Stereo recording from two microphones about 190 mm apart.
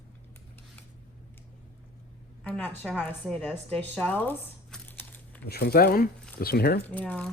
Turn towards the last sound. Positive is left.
turn(degrees=5)  # may be behind; listen again after turning